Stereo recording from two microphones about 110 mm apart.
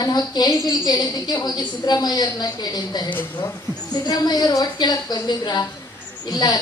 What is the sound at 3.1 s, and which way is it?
Speech, 15° left (ahead or behind).